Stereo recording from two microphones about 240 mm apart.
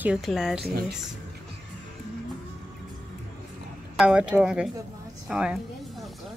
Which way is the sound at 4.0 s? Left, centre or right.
Centre.